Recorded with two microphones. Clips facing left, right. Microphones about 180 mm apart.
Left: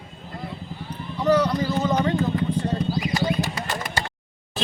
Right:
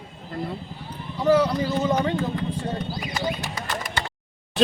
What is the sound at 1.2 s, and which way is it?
Speech, 5° right (ahead or behind).